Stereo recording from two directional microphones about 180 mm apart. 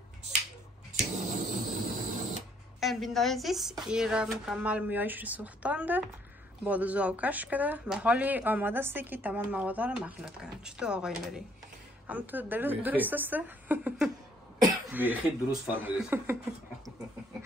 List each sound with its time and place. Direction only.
0.9 s a sound: 45° right (ahead or behind)
2.8 s speech: centre (ahead or behind)
14.9 s throat clearing: 10° right (ahead or behind)
15.6 s speech: 5° right (ahead or behind)